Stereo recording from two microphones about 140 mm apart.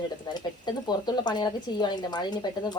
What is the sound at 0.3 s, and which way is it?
Speech, 30° left (ahead or behind).